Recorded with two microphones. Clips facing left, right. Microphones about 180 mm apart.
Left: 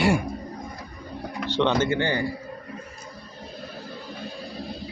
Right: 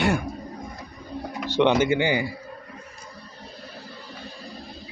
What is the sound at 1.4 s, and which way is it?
Speech, 10° right (ahead or behind).